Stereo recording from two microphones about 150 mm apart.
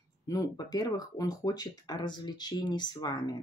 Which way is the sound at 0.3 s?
25° left (ahead or behind).